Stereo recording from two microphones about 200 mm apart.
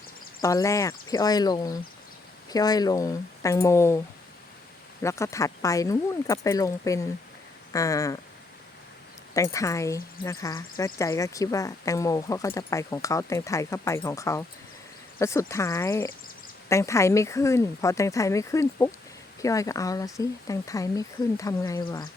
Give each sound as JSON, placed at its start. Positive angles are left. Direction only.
{"t": 0.4, "sound": "speech", "side_deg": 15}
{"t": 5.0, "sound": "speech", "side_deg": 15}
{"t": 9.3, "sound": "speech", "side_deg": 15}